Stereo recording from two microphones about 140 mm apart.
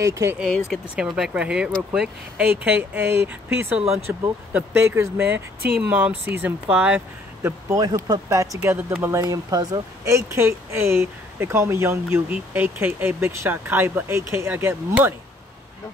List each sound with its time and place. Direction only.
0.0 s speech: 20° right (ahead or behind)
0.7 s speech: 5° right (ahead or behind)
7.4 s speech: 20° right (ahead or behind)